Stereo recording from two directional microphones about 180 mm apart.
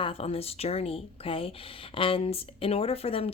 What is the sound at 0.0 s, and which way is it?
Speech, 30° left (ahead or behind).